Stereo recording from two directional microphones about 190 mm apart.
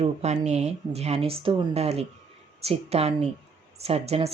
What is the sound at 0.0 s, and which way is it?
Speech, 35° right (ahead or behind).